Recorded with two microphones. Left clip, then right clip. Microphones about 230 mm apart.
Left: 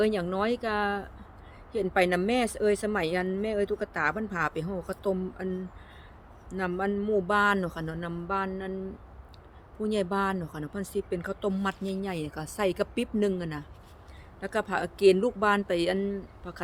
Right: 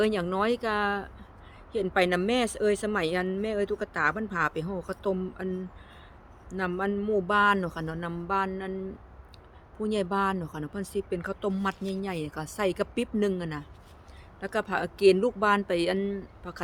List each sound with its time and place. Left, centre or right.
0.0 s speech: centre
9.8 s speech: centre